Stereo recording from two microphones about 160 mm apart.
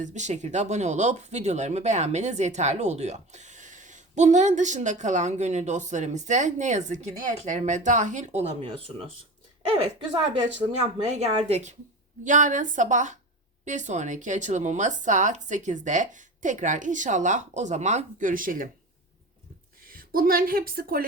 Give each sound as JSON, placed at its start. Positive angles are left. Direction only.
{"t": 0.0, "sound": "speech", "side_deg": -50}
{"t": 10.3, "sound": "speech", "side_deg": -30}
{"t": 12.2, "sound": "speech", "side_deg": -50}
{"t": 19.9, "sound": "a woman's voice", "side_deg": -65}